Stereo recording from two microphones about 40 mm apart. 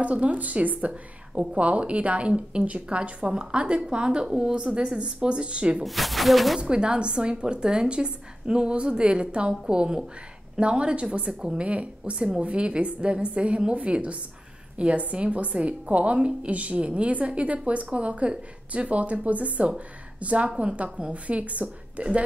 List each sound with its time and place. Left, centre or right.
0.0 s a woman's voice: right
3.0 s a woman's voice: right
5.9 s speech: centre
6.6 s a woman's voice: right